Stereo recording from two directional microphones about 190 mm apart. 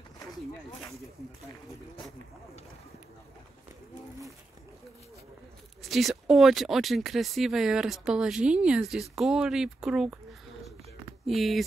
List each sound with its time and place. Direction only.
5.8 s speech: centre (ahead or behind)
11.2 s speech: centre (ahead or behind)